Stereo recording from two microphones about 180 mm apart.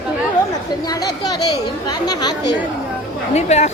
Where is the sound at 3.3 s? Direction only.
40° left (ahead or behind).